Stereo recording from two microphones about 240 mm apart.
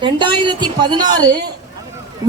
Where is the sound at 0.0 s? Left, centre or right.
Centre.